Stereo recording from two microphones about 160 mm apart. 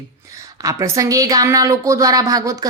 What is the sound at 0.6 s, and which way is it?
A woman's voice, 20° right (ahead or behind).